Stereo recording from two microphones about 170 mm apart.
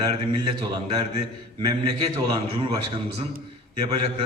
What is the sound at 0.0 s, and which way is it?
A man's voice, 25° right (ahead or behind).